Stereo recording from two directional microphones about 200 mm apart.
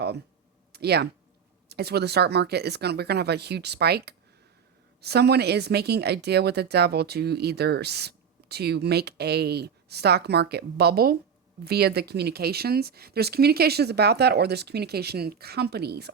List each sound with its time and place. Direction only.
0.7 s a woman's voice: 55° right (ahead or behind)